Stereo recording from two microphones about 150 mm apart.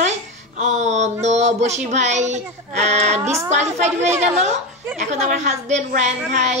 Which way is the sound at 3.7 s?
50° right (ahead or behind).